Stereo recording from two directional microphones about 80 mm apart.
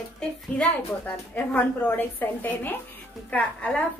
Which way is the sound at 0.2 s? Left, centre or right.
Centre.